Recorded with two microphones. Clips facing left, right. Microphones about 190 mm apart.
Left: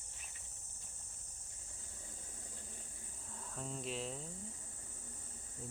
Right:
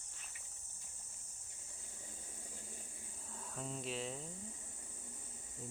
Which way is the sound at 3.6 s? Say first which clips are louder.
Even; centre (ahead or behind).